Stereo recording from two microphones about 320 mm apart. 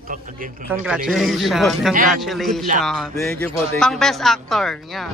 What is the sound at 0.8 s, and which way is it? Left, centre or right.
Speech, centre.